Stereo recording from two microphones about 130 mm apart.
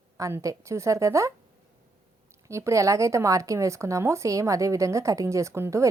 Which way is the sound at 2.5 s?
25° right (ahead or behind).